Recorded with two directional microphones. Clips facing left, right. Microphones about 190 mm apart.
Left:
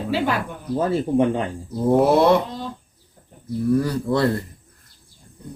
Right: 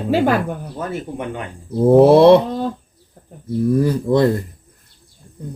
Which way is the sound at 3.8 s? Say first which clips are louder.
Right 5 dB; 20° right (ahead or behind).